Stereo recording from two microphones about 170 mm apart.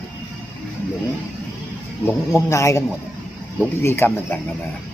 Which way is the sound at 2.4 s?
15° left (ahead or behind).